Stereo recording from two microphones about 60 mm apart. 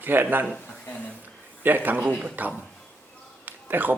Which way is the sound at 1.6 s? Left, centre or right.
Right.